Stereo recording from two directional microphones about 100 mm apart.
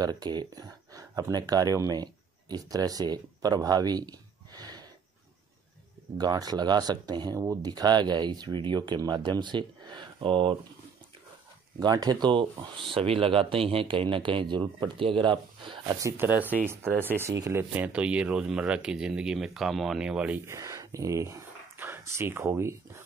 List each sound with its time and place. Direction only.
0.0 s speech: 45° right (ahead or behind)
6.1 s speech: 40° right (ahead or behind); by 10.5 s 60° right (ahead or behind)
11.8 s speech: 40° right (ahead or behind)
16.0 s speech: 30° right (ahead or behind)
16.3 s speech: 15° right (ahead or behind)
17.7 s speech: 15° right (ahead or behind)
20.4 s speech: 35° right (ahead or behind)